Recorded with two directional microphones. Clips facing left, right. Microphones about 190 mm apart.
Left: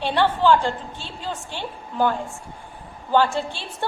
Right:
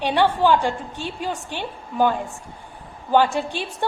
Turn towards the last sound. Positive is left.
turn(degrees=-15)  # may be behind; listen again after turning